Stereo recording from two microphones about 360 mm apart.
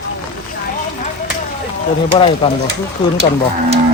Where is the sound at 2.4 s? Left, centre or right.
Centre.